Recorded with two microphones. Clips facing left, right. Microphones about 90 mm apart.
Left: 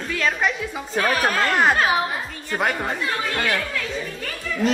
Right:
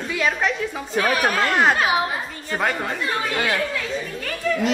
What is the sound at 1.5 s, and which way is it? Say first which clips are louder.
Speech: even; centre (ahead or behind).